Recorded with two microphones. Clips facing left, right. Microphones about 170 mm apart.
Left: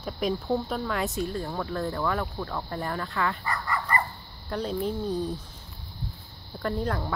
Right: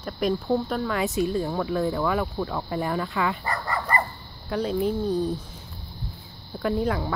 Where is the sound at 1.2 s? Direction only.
10° right (ahead or behind).